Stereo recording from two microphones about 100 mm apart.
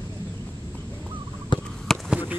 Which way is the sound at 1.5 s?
50° left (ahead or behind).